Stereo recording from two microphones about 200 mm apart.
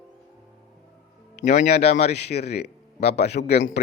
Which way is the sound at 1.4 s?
35° left (ahead or behind).